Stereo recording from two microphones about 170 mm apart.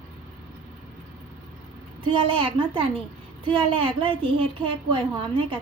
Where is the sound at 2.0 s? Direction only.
30° right (ahead or behind).